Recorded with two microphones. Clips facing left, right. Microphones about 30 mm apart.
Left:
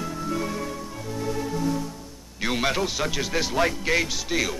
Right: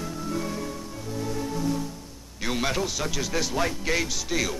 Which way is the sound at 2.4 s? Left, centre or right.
Centre.